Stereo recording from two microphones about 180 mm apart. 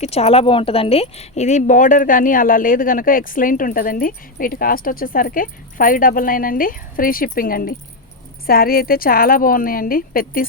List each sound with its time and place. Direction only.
0.0 s speech: 35° left (ahead or behind); by 10.4 s 55° left (ahead or behind)